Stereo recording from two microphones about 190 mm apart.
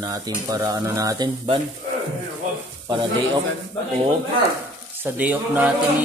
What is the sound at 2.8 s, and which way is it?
Speech, 25° right (ahead or behind).